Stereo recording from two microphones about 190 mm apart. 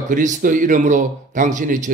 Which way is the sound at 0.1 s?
40° right (ahead or behind).